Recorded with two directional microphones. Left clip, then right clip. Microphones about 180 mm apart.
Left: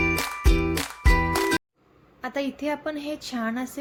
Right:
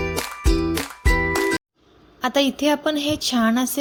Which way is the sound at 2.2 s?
40° right (ahead or behind).